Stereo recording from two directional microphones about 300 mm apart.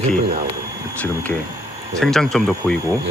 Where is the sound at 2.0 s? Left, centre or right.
Centre.